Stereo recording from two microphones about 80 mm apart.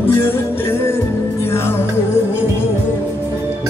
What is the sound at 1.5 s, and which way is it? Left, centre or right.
Music, left.